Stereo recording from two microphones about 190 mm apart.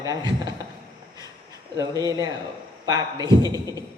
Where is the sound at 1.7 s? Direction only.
20° right (ahead or behind).